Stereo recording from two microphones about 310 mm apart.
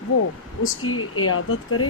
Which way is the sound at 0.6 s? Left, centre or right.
Left.